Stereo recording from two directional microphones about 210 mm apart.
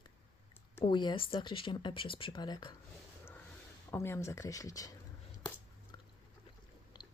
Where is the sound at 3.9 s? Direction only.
10° left (ahead or behind).